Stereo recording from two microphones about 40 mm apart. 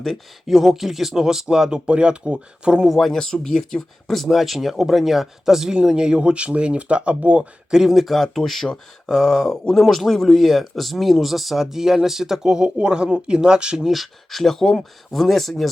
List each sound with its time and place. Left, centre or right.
0.0 s speech: centre; by 2.8 s right
2.8 s speech: centre
3.1 s speech: centre; by 7.4 s right
7.7 s speech: centre
13.8 s speech: centre